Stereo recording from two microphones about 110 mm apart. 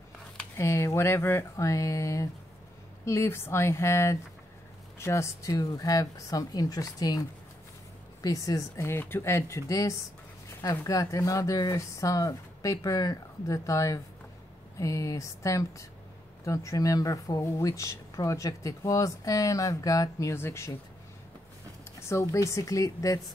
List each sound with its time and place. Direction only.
0.6 s speech: 25° left (ahead or behind)
22.1 s speech: 30° left (ahead or behind)